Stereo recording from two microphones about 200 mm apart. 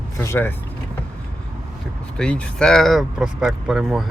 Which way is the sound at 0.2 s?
10° left (ahead or behind).